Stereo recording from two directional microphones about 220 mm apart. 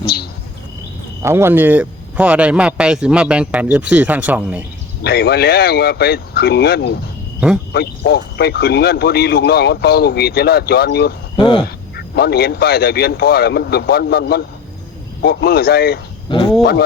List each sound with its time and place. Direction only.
0.0 s bird: 45° left (ahead or behind)
1.2 s speech: 10° right (ahead or behind)
5.0 s speech: 45° left (ahead or behind)
11.3 s speech: 20° left (ahead or behind)
11.9 s speech: 45° left (ahead or behind)